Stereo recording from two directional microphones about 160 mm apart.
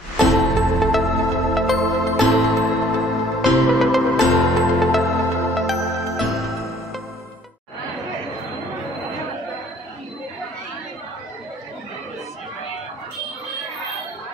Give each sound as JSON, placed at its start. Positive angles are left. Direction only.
{"t": 0.3, "sound": "music", "side_deg": 0}